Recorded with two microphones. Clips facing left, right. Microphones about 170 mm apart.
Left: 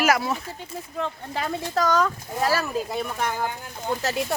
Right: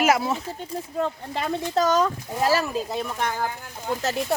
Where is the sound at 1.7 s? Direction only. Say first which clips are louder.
Right 1 dB; 25° right (ahead or behind).